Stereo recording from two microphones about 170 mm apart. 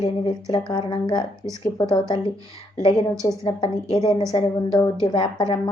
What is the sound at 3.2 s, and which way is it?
A woman's voice, 25° left (ahead or behind).